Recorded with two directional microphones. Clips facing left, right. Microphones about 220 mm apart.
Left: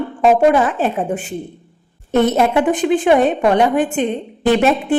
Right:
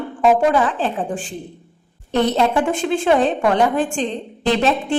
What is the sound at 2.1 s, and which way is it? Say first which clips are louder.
Speech: left 3 dB; 20° left (ahead or behind).